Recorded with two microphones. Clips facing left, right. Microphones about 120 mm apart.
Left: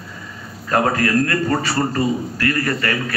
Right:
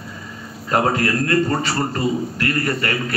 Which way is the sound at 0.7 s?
20° right (ahead or behind).